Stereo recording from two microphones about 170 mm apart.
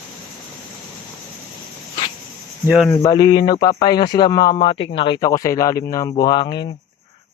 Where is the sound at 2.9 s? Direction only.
25° left (ahead or behind).